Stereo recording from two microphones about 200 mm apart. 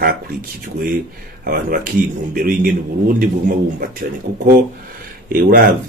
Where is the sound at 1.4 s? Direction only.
50° right (ahead or behind).